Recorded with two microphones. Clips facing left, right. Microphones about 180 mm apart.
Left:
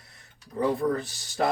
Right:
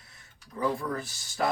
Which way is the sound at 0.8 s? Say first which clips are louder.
Left 7 dB; 40° left (ahead or behind).